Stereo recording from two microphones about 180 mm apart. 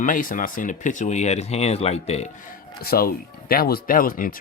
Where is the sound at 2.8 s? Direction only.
55° left (ahead or behind).